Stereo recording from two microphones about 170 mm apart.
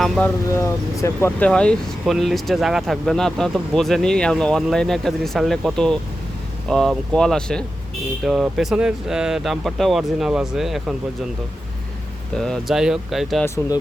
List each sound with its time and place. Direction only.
0.5 s speech: 15° left (ahead or behind); by 10.9 s centre (ahead or behind)
12.4 s speech: centre (ahead or behind)